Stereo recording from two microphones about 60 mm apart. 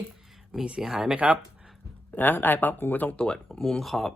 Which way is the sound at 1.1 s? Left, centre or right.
Right.